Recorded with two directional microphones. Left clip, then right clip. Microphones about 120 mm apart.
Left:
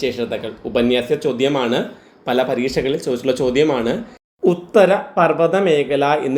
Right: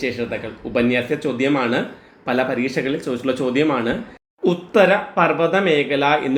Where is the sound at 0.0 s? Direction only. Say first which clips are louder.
Left 2 dB; 35° left (ahead or behind).